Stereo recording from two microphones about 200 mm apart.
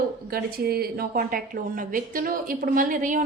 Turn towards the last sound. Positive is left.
turn(degrees=-40)  # may be behind; listen again after turning